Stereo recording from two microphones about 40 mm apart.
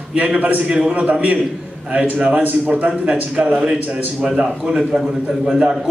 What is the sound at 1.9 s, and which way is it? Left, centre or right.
Speech, right.